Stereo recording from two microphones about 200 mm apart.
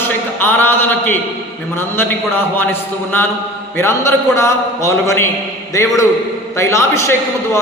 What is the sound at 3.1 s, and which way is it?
A man's voice, 10° left (ahead or behind).